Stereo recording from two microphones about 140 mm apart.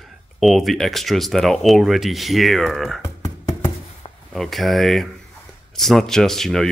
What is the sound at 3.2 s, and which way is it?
Music, 25° left (ahead or behind).